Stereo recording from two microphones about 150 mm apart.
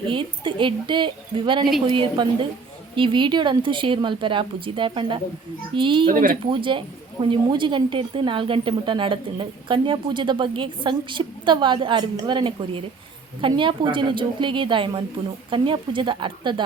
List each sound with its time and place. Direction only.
0.1 s a woman's voice: 35° right (ahead or behind)
6.1 s speech: 65° right (ahead or behind)
6.4 s a woman's voice: 35° right (ahead or behind)